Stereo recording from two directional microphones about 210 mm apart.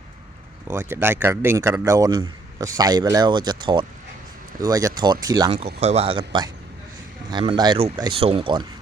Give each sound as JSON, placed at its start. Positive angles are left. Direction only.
{"t": 0.7, "sound": "speech", "side_deg": -10}
{"t": 5.8, "sound": "speech", "side_deg": -30}